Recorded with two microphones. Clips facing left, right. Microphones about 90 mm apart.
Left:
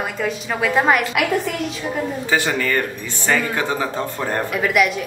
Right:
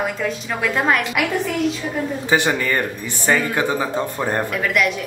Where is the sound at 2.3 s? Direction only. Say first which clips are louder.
Right 1 dB; 20° right (ahead or behind).